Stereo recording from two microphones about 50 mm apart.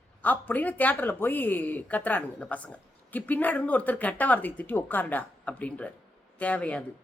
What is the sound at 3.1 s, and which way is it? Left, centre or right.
Speech, left.